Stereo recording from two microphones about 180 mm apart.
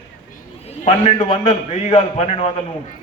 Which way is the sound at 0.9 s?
30° left (ahead or behind).